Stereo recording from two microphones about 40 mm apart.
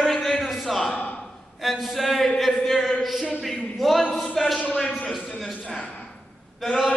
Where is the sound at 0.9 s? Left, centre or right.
Left.